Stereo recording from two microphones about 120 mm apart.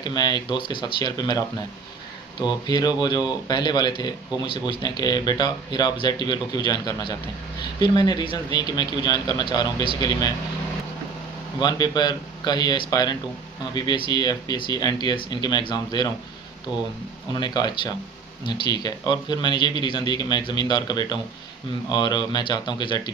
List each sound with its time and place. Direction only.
0.0 s a man's voice: 35° left (ahead or behind)
2.4 s a man's voice: 35° left (ahead or behind)
11.6 s a man's voice: 35° left (ahead or behind)
17.3 s a man's voice: 35° left (ahead or behind)